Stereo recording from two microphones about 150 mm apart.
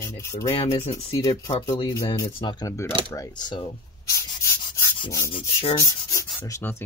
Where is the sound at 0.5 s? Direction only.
40° left (ahead or behind).